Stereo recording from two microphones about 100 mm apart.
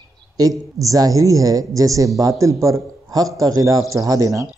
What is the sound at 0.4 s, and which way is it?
Speech, 35° right (ahead or behind).